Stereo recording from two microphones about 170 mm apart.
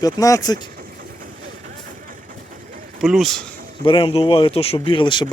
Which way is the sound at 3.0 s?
Centre (ahead or behind).